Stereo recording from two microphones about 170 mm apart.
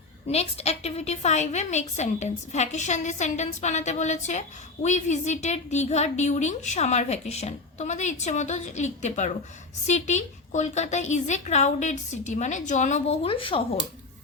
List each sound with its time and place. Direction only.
0.3 s a woman's voice: 35° left (ahead or behind)